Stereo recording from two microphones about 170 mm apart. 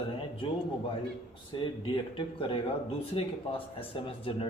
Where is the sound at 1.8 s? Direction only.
30° left (ahead or behind).